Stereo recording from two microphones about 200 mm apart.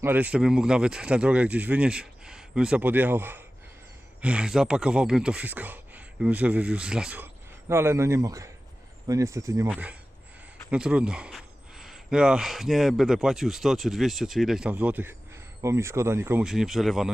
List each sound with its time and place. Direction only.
0.0 s speech: 10° right (ahead or behind)